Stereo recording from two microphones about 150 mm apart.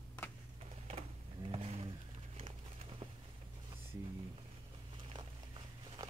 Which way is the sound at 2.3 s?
40° right (ahead or behind).